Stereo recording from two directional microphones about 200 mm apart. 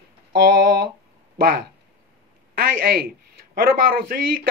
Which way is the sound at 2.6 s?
50° right (ahead or behind).